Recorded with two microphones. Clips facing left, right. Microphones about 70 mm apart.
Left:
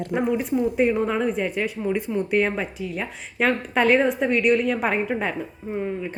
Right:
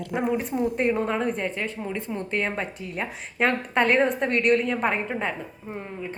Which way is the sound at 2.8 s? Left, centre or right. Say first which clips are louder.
Left 2 dB; centre.